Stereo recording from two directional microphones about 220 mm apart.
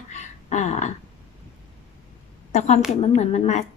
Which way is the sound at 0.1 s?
35° left (ahead or behind).